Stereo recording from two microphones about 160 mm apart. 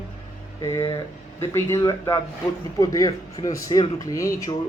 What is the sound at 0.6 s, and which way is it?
A man's voice, 20° left (ahead or behind).